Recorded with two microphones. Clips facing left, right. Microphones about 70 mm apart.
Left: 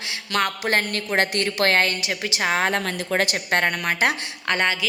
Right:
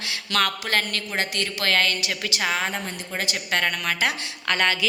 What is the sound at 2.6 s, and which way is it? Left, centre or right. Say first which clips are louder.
Speech: left 5 dB; left.